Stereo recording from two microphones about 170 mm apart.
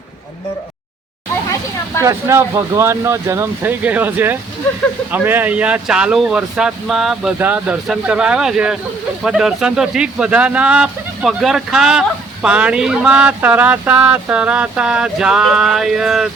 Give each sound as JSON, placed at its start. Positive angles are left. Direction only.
{"t": 2.0, "sound": "speech", "side_deg": -15}